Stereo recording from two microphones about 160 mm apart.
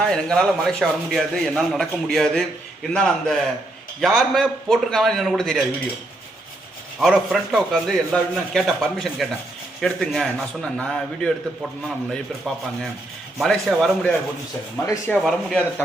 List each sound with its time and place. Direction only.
0.0 s a man's voice: 5° left (ahead or behind)
7.0 s a man's voice: centre (ahead or behind)
13.4 s a man's voice: centre (ahead or behind)
14.8 s speech: 15° left (ahead or behind)
15.2 s a man's voice: 5° left (ahead or behind)